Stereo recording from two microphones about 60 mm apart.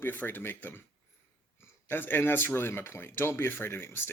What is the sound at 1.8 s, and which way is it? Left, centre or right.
Speech, left.